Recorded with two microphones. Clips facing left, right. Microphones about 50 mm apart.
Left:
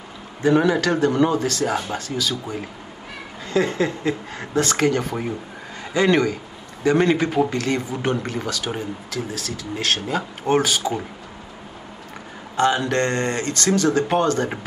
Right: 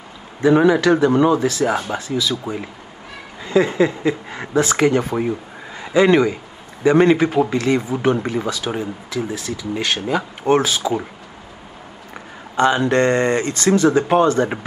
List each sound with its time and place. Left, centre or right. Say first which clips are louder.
0.4 s a man's voice: right 4 dB; centre
12.5 s speech: right 4 dB; right